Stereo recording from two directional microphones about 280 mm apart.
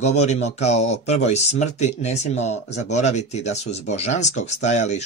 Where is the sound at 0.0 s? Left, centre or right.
Left.